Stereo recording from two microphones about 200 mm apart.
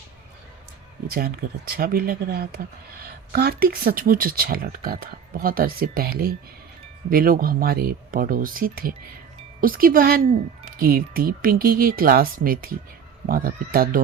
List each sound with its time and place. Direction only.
1.0 s speech: 50° right (ahead or behind)